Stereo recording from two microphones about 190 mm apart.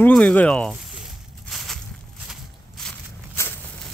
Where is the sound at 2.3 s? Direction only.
Centre (ahead or behind).